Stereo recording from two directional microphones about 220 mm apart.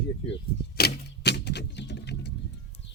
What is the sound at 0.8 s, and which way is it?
Typewriter, 45° left (ahead or behind).